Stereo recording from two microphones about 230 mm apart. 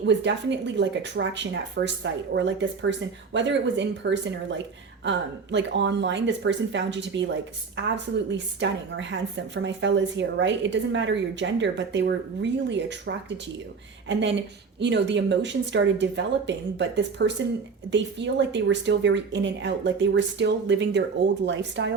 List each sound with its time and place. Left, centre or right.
0.0 s a woman's voice: right